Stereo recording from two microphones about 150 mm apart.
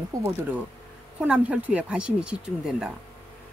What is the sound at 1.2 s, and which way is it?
Speech, 10° right (ahead or behind).